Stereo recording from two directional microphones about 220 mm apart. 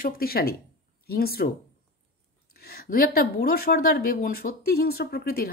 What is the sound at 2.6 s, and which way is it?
Speech, 40° left (ahead or behind).